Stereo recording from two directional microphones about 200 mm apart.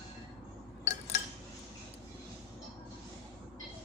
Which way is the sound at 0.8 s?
35° left (ahead or behind).